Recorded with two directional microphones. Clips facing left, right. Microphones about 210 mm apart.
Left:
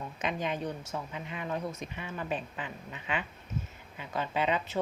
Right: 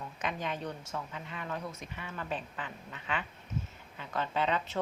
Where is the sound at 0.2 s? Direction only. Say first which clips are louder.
Left 3 dB; 20° left (ahead or behind).